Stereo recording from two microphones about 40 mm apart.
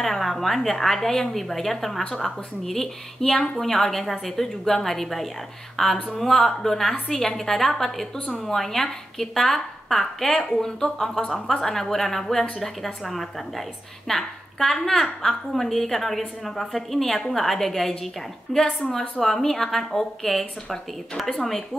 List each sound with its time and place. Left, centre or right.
0.0 s a woman's voice: centre
18.5 s a woman's voice: centre
18.9 s a woman's voice: centre